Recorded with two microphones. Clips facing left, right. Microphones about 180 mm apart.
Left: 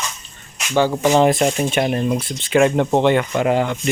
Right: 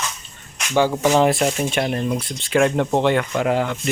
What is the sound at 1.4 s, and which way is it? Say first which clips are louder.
Speech: left 3 dB; 10° left (ahead or behind).